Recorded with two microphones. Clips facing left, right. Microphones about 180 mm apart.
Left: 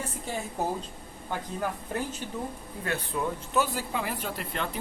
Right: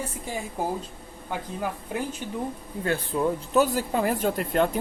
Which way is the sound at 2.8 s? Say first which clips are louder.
Right 6 dB; 30° right (ahead or behind).